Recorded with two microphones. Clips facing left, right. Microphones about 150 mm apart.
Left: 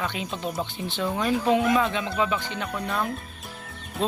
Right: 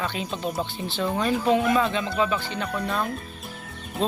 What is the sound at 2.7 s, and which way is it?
Speech, centre (ahead or behind).